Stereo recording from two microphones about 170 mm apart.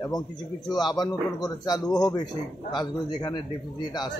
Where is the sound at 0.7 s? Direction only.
25° left (ahead or behind).